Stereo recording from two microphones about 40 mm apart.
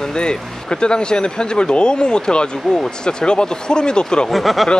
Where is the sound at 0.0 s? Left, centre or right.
Left.